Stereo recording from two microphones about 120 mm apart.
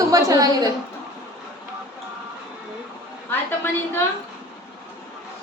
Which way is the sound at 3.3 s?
20° left (ahead or behind).